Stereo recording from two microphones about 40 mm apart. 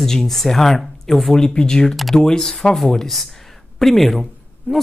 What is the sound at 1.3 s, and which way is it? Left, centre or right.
Speech, left.